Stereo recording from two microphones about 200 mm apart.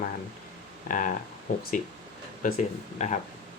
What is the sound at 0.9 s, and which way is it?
Speech, 40° left (ahead or behind).